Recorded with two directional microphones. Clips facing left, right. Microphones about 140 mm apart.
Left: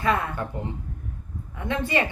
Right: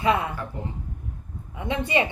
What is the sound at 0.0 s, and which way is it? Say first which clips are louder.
Speech: right 2 dB; 15° right (ahead or behind).